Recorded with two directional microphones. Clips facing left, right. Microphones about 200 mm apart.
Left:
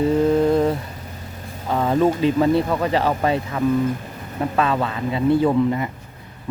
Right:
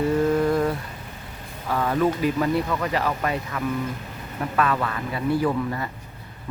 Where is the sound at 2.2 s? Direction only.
25° left (ahead or behind).